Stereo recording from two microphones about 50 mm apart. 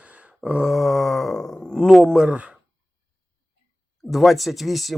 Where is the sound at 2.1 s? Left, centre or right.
Centre.